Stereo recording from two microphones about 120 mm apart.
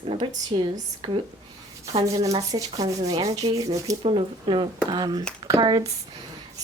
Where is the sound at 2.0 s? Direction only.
30° right (ahead or behind).